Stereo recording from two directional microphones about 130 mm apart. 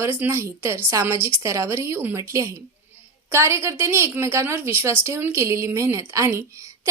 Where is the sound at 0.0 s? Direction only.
20° right (ahead or behind).